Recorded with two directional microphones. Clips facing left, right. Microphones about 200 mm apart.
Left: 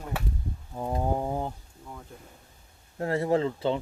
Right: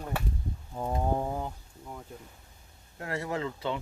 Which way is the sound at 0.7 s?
5° left (ahead or behind).